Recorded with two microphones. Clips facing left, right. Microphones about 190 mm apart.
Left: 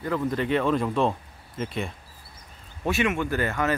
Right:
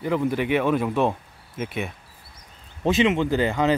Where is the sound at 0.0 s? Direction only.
15° right (ahead or behind).